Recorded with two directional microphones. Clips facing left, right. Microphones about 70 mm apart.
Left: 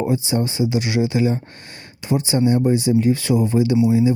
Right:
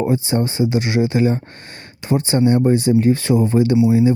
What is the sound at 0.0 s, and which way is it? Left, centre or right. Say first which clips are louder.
Speech: right 2 dB; right.